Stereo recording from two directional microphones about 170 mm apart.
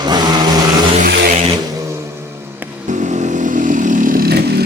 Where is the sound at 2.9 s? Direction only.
45° right (ahead or behind); by 4.6 s 65° right (ahead or behind).